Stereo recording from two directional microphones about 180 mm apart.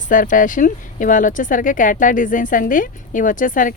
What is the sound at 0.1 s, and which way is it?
A woman's voice, 45° left (ahead or behind).